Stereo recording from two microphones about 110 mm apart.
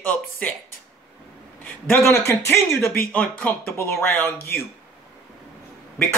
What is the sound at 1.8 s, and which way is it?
Speech, 25° left (ahead or behind).